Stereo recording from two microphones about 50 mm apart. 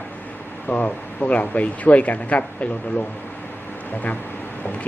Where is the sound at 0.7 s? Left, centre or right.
Left.